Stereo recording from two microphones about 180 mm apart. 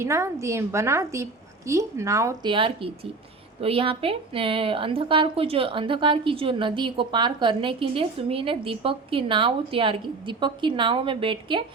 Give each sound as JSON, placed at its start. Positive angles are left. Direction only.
{"t": 0.0, "sound": "a woman's voice", "side_deg": -15}